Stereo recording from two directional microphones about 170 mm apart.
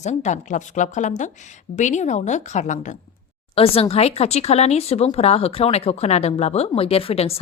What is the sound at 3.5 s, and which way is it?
Speech, 35° left (ahead or behind).